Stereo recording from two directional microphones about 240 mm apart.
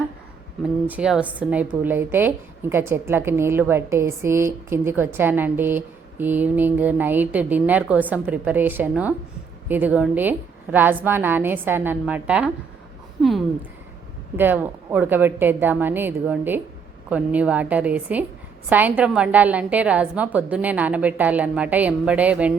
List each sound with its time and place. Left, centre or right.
0.9 s a woman's voice: centre